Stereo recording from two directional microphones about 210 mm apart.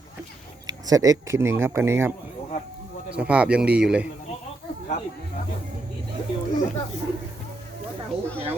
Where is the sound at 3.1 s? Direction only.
5° right (ahead or behind).